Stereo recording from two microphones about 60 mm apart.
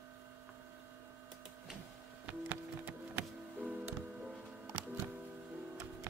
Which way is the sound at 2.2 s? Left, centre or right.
Right.